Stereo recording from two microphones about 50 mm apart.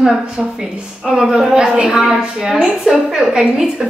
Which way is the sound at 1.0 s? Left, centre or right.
Centre.